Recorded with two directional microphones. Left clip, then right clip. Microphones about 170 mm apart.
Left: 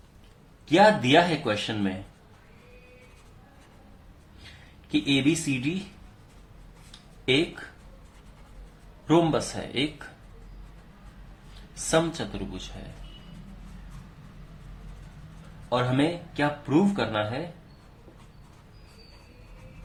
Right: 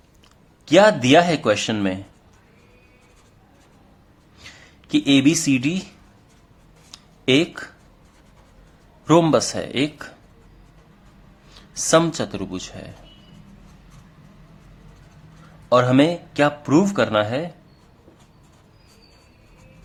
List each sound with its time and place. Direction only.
0.6 s speech: 75° right (ahead or behind)
4.9 s speech: 75° right (ahead or behind)
9.0 s speech: 75° right (ahead or behind)
11.7 s speech: 70° right (ahead or behind)
15.7 s speech: 70° right (ahead or behind)